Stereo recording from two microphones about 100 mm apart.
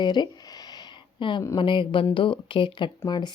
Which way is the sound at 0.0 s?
50° left (ahead or behind).